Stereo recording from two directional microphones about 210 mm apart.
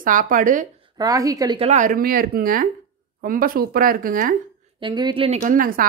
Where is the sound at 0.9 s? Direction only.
15° right (ahead or behind).